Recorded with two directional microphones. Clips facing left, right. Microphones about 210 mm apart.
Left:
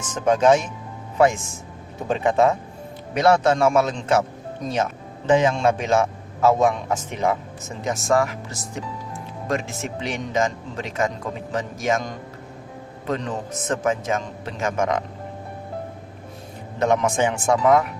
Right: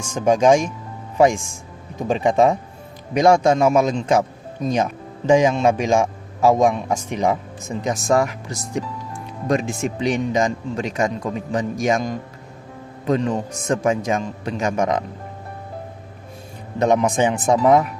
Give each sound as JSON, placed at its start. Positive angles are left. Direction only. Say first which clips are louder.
{"t": 0.0, "sound": "a man's voice", "louder": "right 2 dB", "side_deg": -10}
{"t": 16.8, "sound": "a man's voice", "louder": "right 3 dB", "side_deg": -15}